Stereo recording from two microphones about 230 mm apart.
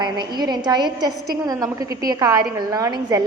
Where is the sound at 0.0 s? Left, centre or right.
Centre.